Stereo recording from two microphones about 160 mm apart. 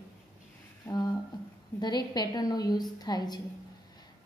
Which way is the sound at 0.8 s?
25° left (ahead or behind).